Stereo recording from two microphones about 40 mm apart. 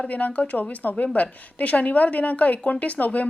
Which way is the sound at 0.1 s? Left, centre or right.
Left.